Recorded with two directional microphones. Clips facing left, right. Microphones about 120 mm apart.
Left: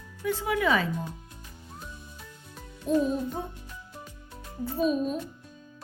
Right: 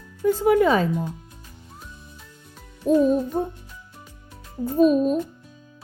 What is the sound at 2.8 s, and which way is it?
Speech, 40° right (ahead or behind).